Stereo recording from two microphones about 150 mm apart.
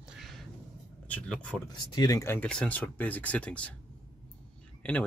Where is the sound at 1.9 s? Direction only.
25° left (ahead or behind); by 3.7 s 10° left (ahead or behind).